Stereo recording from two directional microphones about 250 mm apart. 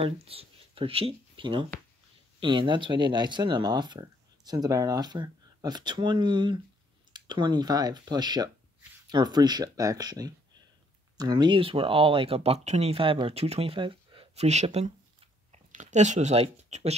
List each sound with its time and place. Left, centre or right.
0.0 s speech: right